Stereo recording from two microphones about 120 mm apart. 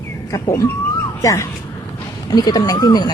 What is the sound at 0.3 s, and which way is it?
Speech, 30° left (ahead or behind).